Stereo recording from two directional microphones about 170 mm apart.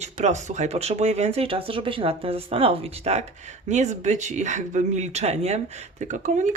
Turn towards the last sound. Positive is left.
turn(degrees=-45)  # may be behind; listen again after turning